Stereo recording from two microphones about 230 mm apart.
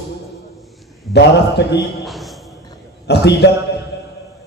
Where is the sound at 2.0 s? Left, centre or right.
Centre.